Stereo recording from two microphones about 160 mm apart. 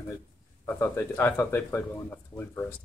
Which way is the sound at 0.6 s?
15° left (ahead or behind).